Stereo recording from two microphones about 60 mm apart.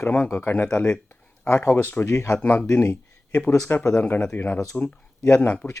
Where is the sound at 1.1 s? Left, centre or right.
Left.